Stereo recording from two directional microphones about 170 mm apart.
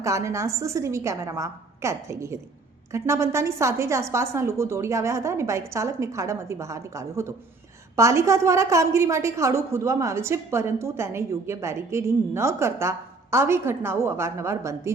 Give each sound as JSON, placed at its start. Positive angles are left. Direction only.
{"t": 0.0, "sound": "a woman's voice", "side_deg": -15}